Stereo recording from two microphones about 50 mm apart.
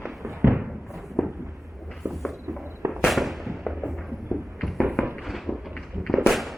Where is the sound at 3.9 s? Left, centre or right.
Centre.